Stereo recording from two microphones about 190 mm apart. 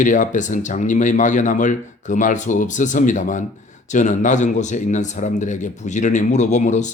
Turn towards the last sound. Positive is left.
turn(degrees=40)  # may be behind; listen again after turning